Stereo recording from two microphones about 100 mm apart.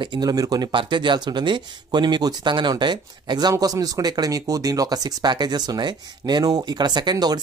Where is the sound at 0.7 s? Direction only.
55° right (ahead or behind).